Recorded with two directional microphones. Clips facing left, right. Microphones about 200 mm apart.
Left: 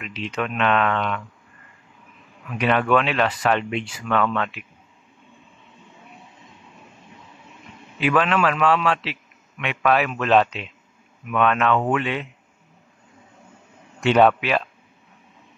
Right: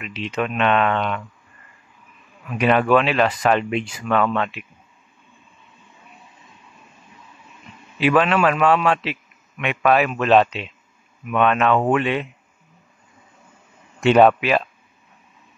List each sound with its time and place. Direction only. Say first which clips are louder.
0.0 s speech: right 3 dB; 5° right (ahead or behind)
2.5 s a man's voice: right 3 dB; 10° right (ahead or behind)
3.3 s a man's voice: right 3 dB; 15° right (ahead or behind)
4.2 s a man's voice: right 2 dB; 30° right (ahead or behind)
8.0 s a man's voice: right 3 dB; 5° right (ahead or behind)
11.7 s speech: right 3 dB; 35° right (ahead or behind)
12.0 s a man's voice: right 4 dB; 20° right (ahead or behind)
14.1 s a man's voice: right 2 dB; 10° right (ahead or behind)